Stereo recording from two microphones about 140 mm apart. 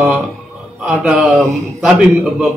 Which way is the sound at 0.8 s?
5° right (ahead or behind).